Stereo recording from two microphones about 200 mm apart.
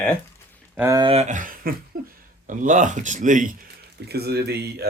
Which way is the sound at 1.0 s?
30° right (ahead or behind).